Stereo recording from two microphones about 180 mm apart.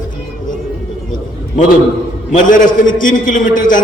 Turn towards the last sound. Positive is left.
turn(degrees=45)  # may be behind; listen again after turning